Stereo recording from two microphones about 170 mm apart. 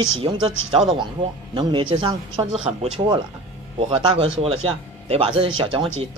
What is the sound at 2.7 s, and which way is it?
A man's voice, 40° right (ahead or behind).